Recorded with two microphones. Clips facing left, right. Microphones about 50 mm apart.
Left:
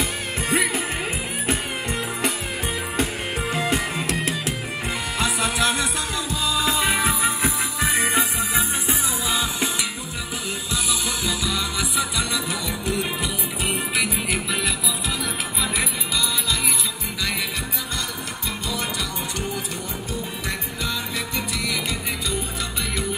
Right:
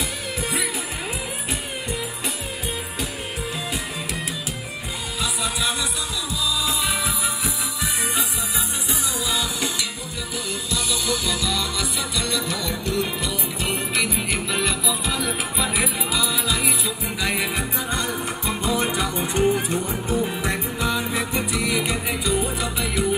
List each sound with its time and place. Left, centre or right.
3.5 s music: left
6.4 s music: left
10.7 s music: centre
13.9 s music: centre
18.7 s music: right